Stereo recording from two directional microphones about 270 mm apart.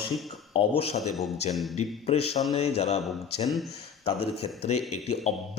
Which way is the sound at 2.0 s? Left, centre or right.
Left.